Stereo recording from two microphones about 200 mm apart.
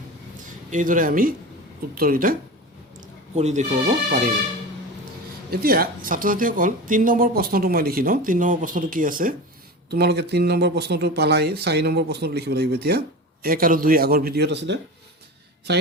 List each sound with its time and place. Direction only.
0.4 s speech: 40° right (ahead or behind)
3.3 s speech: 35° right (ahead or behind)
5.5 s speech: 50° right (ahead or behind)
9.9 s speech: 55° right (ahead or behind)